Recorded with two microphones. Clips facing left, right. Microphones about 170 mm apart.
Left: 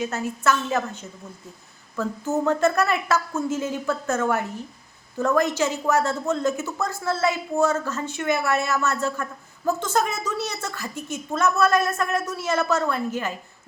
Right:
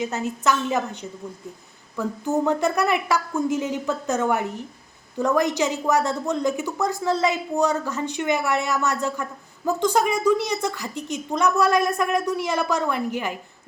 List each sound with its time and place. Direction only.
0.0 s a woman's voice: 20° right (ahead or behind)